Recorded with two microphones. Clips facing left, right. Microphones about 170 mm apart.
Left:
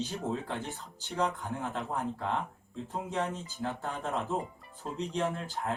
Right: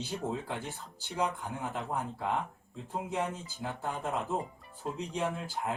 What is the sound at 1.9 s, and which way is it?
Speech, 15° right (ahead or behind).